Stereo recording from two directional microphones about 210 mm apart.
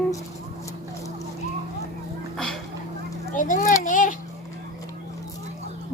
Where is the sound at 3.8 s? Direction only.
40° left (ahead or behind).